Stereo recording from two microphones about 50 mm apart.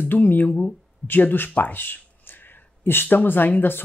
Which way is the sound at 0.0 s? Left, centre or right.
Left.